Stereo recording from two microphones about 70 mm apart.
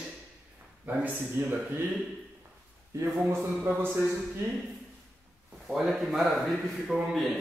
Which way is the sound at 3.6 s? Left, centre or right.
Right.